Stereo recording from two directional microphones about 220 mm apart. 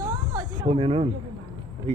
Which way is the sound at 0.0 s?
20° right (ahead or behind).